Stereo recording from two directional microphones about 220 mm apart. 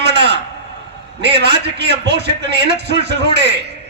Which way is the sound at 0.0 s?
50° right (ahead or behind).